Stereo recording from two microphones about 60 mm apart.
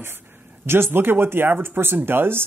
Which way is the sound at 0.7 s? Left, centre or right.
Right.